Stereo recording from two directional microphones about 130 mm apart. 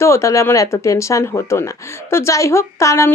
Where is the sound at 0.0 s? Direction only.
20° left (ahead or behind).